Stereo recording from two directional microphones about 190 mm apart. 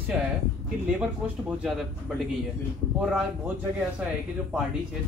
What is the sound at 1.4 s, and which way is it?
Speech, 5° right (ahead or behind).